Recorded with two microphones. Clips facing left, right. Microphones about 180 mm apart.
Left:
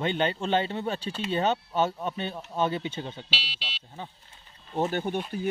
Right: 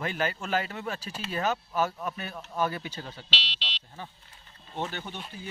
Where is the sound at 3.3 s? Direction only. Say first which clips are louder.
Even; 10° left (ahead or behind).